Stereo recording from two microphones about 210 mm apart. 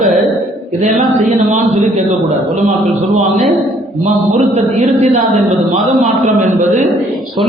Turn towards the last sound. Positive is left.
turn(degrees=-35)  # may be behind; listen again after turning